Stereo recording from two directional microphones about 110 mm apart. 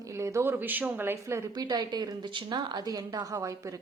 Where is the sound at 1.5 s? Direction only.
40° right (ahead or behind).